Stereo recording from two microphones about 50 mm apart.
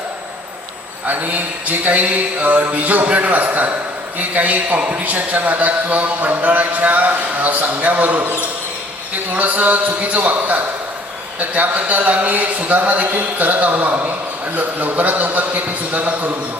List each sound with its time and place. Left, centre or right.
1.0 s a man's voice: right